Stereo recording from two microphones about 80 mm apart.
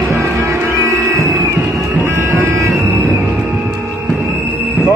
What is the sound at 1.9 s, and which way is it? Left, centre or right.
Music, right.